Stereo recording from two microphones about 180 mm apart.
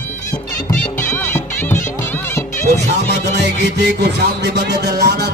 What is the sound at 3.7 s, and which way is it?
Music, 70° right (ahead or behind).